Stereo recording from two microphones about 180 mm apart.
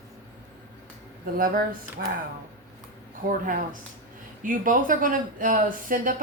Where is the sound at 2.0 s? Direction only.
60° right (ahead or behind).